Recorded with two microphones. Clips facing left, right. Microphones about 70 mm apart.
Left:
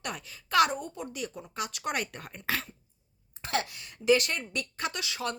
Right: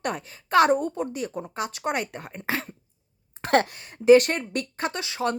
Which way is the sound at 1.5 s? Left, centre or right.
Right.